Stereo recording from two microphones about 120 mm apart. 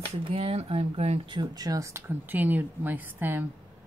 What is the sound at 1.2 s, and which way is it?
Speech, 35° right (ahead or behind).